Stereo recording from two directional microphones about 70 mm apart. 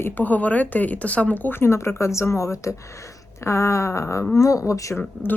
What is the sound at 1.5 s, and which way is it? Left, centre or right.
Speech, left.